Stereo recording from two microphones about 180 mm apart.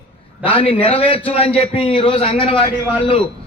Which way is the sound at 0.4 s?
30° left (ahead or behind).